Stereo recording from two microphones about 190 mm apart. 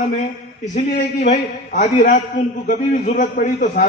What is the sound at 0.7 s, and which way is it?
A man's voice, 40° left (ahead or behind).